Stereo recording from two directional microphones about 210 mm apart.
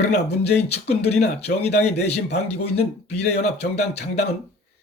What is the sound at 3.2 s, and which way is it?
Speech, 30° left (ahead or behind).